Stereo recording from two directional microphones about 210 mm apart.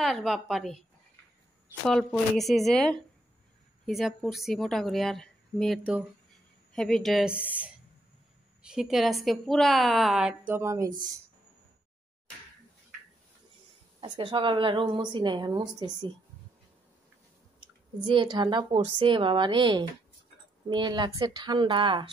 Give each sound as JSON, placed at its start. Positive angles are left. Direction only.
{"t": 0.0, "sound": "a woman's voice", "side_deg": 0}
{"t": 1.9, "sound": "a woman's voice", "side_deg": 0}
{"t": 14.0, "sound": "a woman's voice", "side_deg": -25}
{"t": 18.0, "sound": "a woman's voice", "side_deg": -25}